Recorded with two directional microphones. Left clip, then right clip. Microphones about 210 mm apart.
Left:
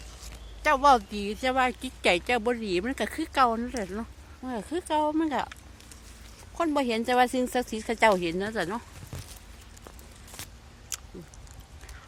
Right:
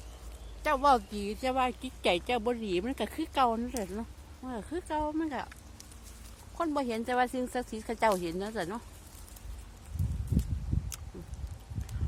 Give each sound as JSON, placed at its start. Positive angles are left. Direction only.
{"t": 0.6, "sound": "speech", "side_deg": 25}
{"t": 4.4, "sound": "speech", "side_deg": 20}
{"t": 6.6, "sound": "speech", "side_deg": 25}